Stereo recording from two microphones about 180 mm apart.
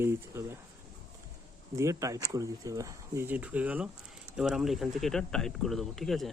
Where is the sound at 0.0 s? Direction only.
15° right (ahead or behind).